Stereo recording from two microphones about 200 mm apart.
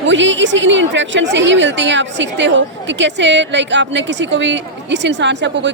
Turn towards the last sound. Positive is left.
turn(degrees=-60)  # may be behind; listen again after turning